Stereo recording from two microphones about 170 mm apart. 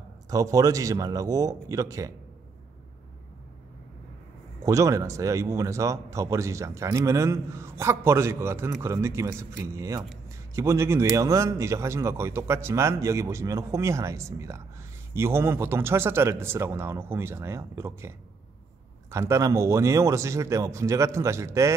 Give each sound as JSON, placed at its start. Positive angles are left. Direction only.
{"t": 0.3, "sound": "a man's voice", "side_deg": -20}
{"t": 4.6, "sound": "a man's voice", "side_deg": -20}